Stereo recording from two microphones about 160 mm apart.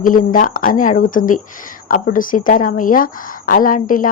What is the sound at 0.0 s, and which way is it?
A woman's voice, 55° left (ahead or behind).